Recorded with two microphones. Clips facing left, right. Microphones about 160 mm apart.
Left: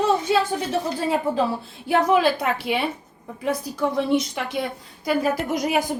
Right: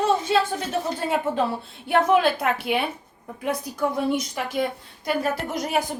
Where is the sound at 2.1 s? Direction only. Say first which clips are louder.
Left 1 dB; centre (ahead or behind).